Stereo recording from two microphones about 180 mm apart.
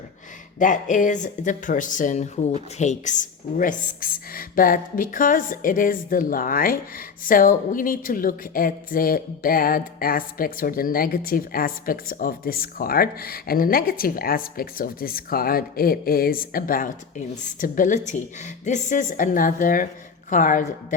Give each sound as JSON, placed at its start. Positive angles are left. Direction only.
{"t": 0.6, "sound": "speech", "side_deg": 45}